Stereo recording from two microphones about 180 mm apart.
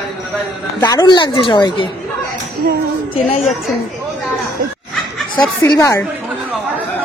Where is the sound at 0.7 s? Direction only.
20° left (ahead or behind).